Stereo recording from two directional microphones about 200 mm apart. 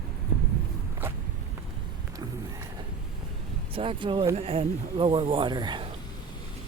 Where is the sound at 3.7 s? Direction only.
25° right (ahead or behind).